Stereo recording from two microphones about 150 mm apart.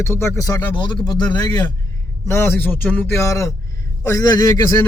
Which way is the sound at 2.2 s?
15° left (ahead or behind).